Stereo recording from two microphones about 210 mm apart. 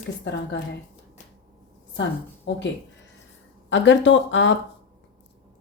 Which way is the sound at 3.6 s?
60° left (ahead or behind).